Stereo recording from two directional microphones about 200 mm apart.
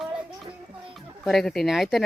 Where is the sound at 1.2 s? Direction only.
Centre (ahead or behind).